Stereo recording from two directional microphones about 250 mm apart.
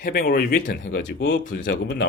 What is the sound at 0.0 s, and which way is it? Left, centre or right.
Speech, left.